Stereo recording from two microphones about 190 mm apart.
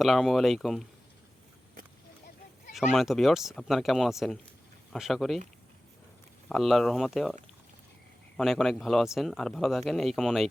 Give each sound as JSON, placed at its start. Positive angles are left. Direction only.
{"t": 0.0, "sound": "speech", "side_deg": 0}
{"t": 2.7, "sound": "speech", "side_deg": 0}
{"t": 6.5, "sound": "speech", "side_deg": 0}
{"t": 8.4, "sound": "speech", "side_deg": 0}